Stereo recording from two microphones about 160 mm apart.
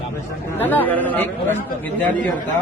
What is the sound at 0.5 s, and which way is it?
A man's voice, 10° left (ahead or behind).